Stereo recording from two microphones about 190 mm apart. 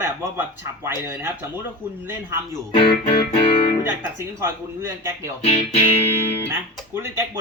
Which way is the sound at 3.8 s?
10° right (ahead or behind).